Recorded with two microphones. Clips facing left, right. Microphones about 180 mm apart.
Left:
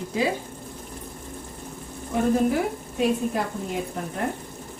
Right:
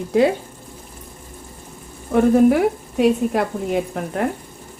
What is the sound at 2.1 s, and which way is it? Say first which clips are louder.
Speech: right 8 dB; 65° right (ahead or behind).